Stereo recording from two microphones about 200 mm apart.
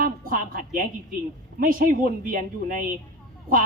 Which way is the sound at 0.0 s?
45° right (ahead or behind).